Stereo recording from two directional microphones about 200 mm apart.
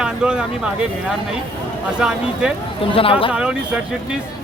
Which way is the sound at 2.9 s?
25° left (ahead or behind).